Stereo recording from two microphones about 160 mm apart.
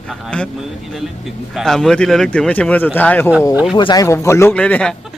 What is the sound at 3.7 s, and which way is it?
Speech, 25° left (ahead or behind).